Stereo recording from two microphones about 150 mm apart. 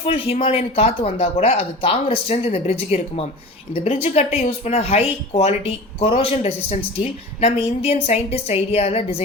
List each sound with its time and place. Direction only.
0.0 s speech: 40° left (ahead or behind)